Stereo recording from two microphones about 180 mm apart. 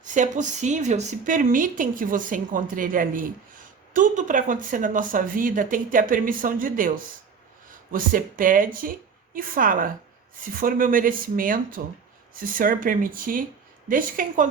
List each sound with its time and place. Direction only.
0.1 s a woman's voice: 45° right (ahead or behind)
7.9 s a woman's voice: 50° right (ahead or behind)